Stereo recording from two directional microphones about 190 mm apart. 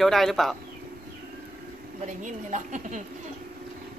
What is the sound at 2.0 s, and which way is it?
A woman's voice, 40° right (ahead or behind).